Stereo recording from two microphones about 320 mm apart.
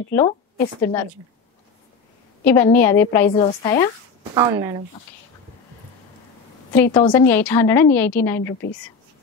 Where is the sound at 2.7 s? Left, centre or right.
Centre.